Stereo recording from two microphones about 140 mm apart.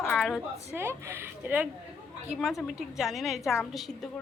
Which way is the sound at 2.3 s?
Centre (ahead or behind).